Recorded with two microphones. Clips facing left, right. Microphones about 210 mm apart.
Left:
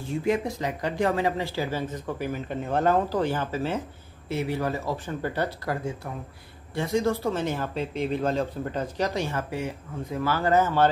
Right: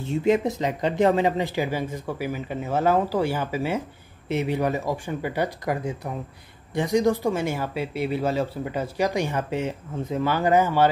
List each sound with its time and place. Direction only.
0.0 s speech: 25° right (ahead or behind)
4.3 s speech: 20° right (ahead or behind)